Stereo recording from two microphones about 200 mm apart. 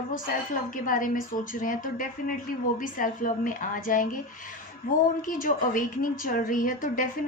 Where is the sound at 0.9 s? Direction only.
45° left (ahead or behind).